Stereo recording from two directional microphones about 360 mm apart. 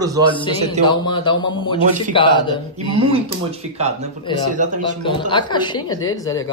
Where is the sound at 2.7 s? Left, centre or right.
Centre.